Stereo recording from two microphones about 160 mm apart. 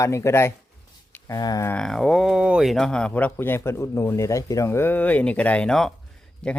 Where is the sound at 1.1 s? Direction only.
20° left (ahead or behind).